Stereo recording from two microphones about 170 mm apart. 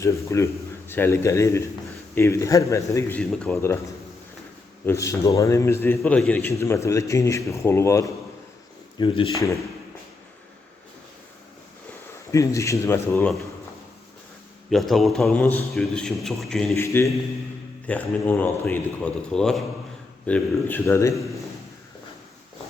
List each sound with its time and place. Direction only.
0.0 s a man's voice: 15° left (ahead or behind)
3.2 s a man's voice: 5° left (ahead or behind)
4.9 s a man's voice: 20° left (ahead or behind)
9.0 s speech: 30° left (ahead or behind)
12.3 s a man's voice: 20° left (ahead or behind)
14.7 s a man's voice: centre (ahead or behind)
16.7 s a man's voice: 15° left (ahead or behind)